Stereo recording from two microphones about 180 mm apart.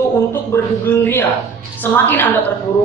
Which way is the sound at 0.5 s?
10° left (ahead or behind).